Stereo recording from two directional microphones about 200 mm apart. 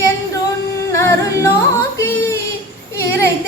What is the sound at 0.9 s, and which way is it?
Music, 15° left (ahead or behind).